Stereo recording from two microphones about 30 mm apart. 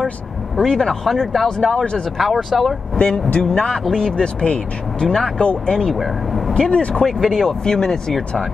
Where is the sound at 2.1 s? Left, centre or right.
Centre.